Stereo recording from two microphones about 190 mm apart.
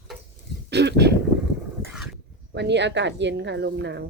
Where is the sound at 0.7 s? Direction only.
60° right (ahead or behind).